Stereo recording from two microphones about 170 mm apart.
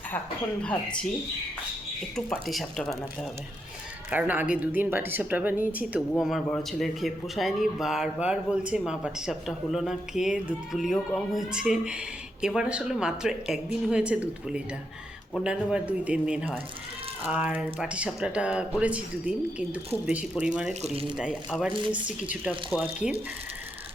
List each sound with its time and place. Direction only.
2.1 s speech: centre (ahead or behind)
4.1 s speech: 10° right (ahead or behind)
20.8 s speech: 35° right (ahead or behind)
21.2 s speech: 5° right (ahead or behind)
21.7 s speech: 30° right (ahead or behind)
22.2 s speech: 5° right (ahead or behind)